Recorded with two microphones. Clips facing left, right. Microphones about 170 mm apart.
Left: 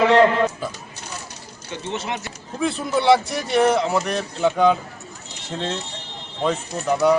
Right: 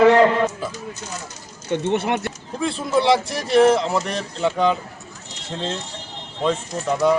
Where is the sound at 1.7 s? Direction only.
55° right (ahead or behind).